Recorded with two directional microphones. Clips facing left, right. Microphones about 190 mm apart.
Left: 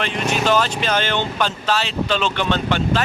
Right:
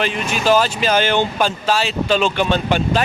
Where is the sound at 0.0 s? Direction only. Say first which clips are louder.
Right 1 dB; 5° right (ahead or behind).